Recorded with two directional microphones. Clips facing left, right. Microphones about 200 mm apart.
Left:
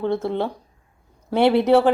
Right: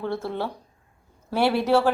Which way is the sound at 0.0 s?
20° left (ahead or behind).